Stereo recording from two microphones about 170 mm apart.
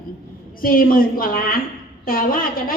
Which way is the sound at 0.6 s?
55° left (ahead or behind).